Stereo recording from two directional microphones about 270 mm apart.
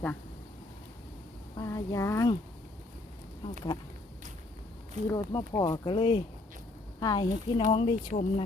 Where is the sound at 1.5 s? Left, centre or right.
Centre.